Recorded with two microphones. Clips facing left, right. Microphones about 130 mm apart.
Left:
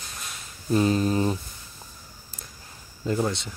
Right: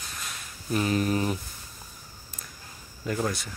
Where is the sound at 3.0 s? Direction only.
25° left (ahead or behind).